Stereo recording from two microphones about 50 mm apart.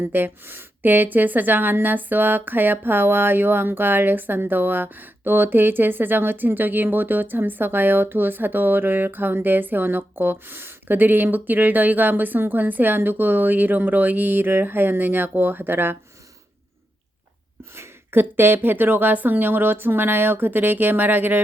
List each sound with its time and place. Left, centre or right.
0.0 s a woman's voice: right
17.7 s a woman's voice: right